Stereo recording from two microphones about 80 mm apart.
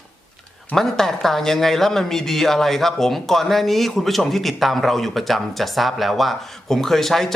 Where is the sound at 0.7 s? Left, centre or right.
Centre.